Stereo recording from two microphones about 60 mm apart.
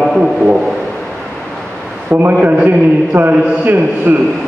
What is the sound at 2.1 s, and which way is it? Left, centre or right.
A man's voice, right.